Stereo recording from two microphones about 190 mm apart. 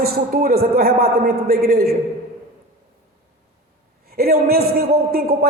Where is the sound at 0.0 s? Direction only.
55° right (ahead or behind).